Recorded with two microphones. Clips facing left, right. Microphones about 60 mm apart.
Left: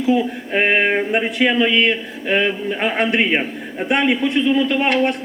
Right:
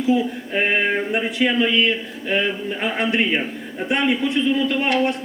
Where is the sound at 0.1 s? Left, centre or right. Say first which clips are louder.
Left 2 dB; left.